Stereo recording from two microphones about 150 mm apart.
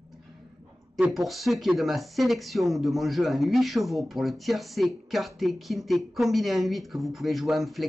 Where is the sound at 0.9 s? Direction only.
Centre (ahead or behind).